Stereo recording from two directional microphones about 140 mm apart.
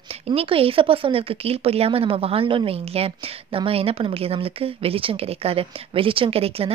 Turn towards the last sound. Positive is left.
turn(degrees=-45)  # may be behind; listen again after turning